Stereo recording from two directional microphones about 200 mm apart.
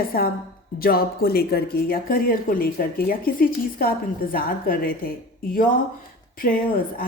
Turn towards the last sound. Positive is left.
turn(degrees=45)  # may be behind; listen again after turning